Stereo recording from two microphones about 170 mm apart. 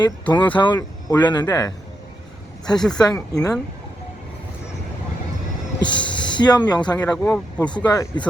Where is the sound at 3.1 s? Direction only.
20° left (ahead or behind).